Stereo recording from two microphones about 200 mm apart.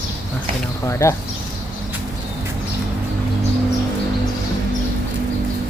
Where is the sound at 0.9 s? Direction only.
15° left (ahead or behind).